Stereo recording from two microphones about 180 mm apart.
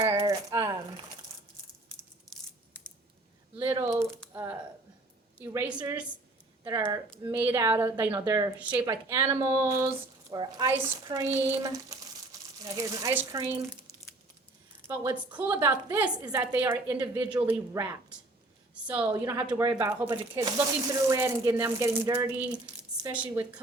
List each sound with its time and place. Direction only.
0.2 s a sound: 20° right (ahead or behind)
3.7 s speech: 15° right (ahead or behind)
14.8 s a woman's voice: 10° right (ahead or behind)
19.1 s speech: 20° right (ahead or behind)